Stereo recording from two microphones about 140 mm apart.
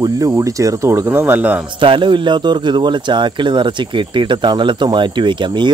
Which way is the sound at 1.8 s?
35° right (ahead or behind).